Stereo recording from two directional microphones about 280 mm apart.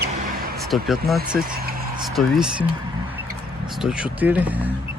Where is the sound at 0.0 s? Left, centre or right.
Right.